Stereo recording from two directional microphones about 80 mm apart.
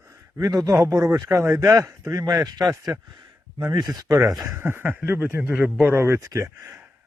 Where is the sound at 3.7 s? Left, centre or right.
Right.